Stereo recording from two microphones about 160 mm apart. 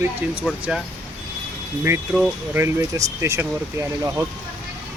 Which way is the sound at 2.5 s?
20° right (ahead or behind).